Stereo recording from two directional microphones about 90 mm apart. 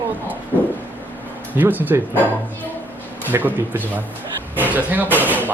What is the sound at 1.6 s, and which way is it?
Speech, 20° right (ahead or behind).